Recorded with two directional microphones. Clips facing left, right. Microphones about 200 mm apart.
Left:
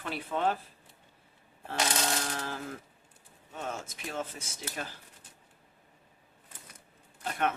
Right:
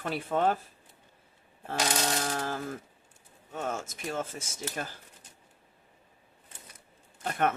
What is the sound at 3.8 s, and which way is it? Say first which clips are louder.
Speech: right 3 dB; 45° right (ahead or behind).